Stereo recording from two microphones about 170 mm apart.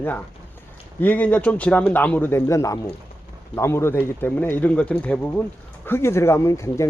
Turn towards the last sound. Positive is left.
turn(degrees=15)  # may be behind; listen again after turning